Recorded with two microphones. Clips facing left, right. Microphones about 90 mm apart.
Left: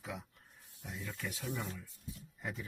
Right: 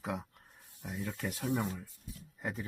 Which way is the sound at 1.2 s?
50° right (ahead or behind).